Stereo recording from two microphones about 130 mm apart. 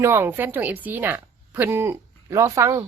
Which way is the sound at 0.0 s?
20° right (ahead or behind).